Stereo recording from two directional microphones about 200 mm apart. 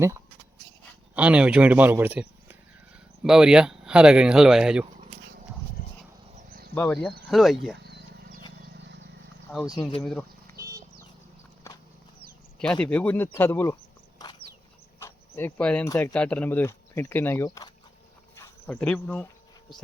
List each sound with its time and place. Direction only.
1.1 s a man's voice: 5° right (ahead or behind)
6.5 s cricket: 45° right (ahead or behind)
6.7 s speech: 10° left (ahead or behind)
7.8 s a sound: 55° right (ahead or behind)
10.0 s speech: 5° left (ahead or behind)
10.6 s a sound: 15° right (ahead or behind)
12.5 s speech: 5° left (ahead or behind)
14.2 s a sound: 20° left (ahead or behind)
14.9 s cricket: 10° left (ahead or behind)
15.9 s speech: 15° left (ahead or behind)
16.1 s speech: 5° left (ahead or behind)
18.3 s insect: 15° left (ahead or behind)
18.8 s speech: 5° left (ahead or behind)